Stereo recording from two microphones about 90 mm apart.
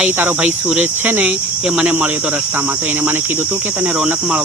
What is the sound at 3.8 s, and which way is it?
Cricket, 15° right (ahead or behind).